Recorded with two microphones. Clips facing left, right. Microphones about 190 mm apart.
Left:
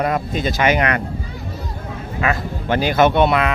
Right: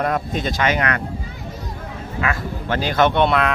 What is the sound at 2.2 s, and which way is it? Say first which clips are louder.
Speech: left 3 dB; 20° left (ahead or behind).